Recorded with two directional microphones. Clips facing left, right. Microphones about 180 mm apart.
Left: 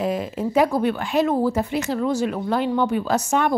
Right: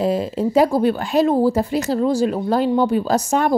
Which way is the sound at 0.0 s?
30° right (ahead or behind).